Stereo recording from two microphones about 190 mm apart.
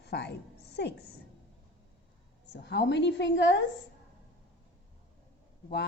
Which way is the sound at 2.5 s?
65° left (ahead or behind).